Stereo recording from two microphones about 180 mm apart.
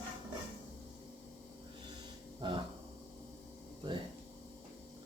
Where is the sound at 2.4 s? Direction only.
25° right (ahead or behind).